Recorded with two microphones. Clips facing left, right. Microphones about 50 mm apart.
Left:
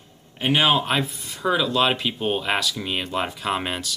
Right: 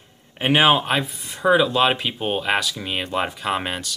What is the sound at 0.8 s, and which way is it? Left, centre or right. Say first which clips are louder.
Speech: right 1 dB; centre.